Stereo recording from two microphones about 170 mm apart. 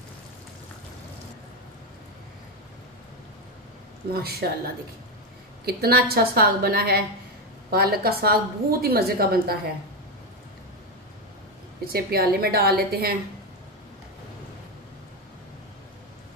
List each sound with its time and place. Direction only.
4.1 s speech: 65° right (ahead or behind)
5.7 s a woman's voice: 65° right (ahead or behind)
11.8 s a woman's voice: 65° right (ahead or behind)